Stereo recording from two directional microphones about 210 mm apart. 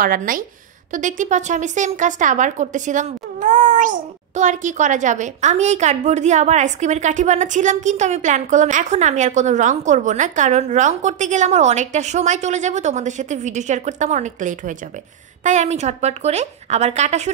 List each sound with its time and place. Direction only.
0.0 s a woman's voice: 40° right (ahead or behind)